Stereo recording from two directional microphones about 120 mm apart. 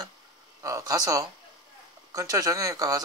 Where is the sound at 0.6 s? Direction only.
25° right (ahead or behind).